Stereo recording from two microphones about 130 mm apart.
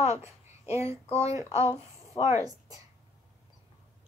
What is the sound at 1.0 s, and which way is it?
Speech, 55° left (ahead or behind).